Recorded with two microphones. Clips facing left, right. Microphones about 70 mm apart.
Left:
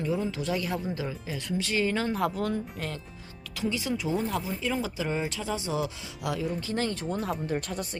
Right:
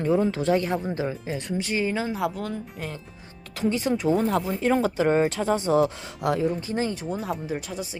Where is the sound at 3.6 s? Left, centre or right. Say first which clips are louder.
Right 6 dB; right.